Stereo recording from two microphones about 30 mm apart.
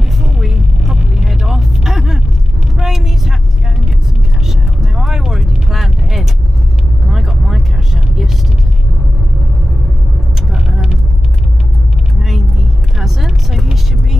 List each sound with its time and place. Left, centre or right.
0.2 s music: centre
2.8 s vehicle: centre
4.5 s vehicle: centre
12.2 s vehicle: centre